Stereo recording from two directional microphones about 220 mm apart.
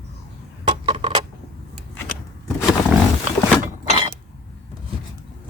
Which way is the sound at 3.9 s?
25° right (ahead or behind).